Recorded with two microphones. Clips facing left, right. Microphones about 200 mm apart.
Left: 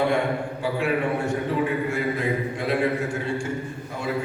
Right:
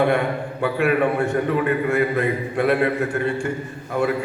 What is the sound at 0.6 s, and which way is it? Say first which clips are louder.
A man's voice: right 6 dB; 60° right (ahead or behind).